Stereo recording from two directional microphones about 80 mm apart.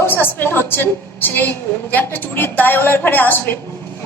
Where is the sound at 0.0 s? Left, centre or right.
Left.